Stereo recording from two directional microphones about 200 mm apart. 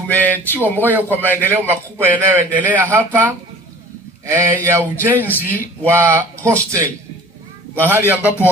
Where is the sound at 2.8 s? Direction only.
10° right (ahead or behind).